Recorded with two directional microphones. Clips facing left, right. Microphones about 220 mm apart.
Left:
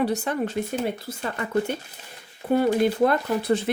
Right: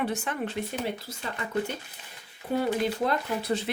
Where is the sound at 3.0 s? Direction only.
50° left (ahead or behind).